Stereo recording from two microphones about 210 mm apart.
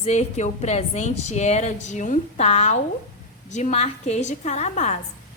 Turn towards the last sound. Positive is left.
turn(degrees=35)  # may be behind; listen again after turning